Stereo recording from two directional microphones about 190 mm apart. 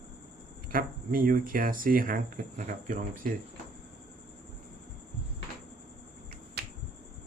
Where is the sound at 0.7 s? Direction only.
45° right (ahead or behind).